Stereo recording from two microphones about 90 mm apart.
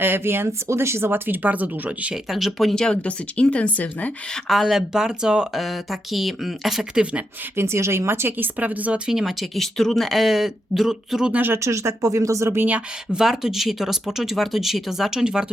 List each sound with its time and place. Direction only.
0.0 s speech: 25° right (ahead or behind)
2.3 s speech: centre (ahead or behind); by 4.1 s 15° left (ahead or behind)
4.4 s speech: centre (ahead or behind)
7.5 s speech: 30° right (ahead or behind); by 11.3 s 5° right (ahead or behind)
11.3 s speech: 25° right (ahead or behind)
13.1 s speech: 5° right (ahead or behind)